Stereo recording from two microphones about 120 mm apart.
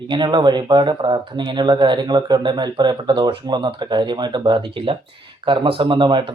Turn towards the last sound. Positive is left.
turn(degrees=-40)  # may be behind; listen again after turning